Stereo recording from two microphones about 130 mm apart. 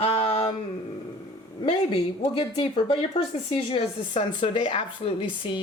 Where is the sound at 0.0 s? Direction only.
45° left (ahead or behind).